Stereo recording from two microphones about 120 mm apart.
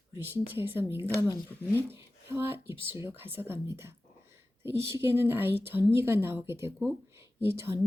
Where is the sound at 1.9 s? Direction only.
20° right (ahead or behind).